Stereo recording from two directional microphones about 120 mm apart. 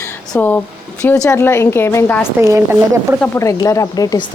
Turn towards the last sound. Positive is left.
turn(degrees=30)  # may be behind; listen again after turning